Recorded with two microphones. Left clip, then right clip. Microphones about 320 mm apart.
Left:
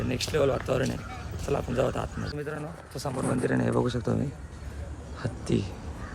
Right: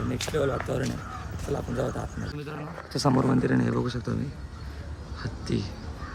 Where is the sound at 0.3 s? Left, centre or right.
Centre.